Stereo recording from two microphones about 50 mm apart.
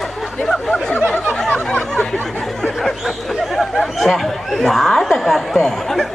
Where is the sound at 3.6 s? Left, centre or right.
Centre.